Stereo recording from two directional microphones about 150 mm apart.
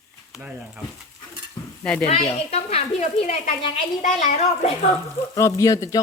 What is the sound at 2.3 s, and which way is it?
A woman's voice, 45° left (ahead or behind).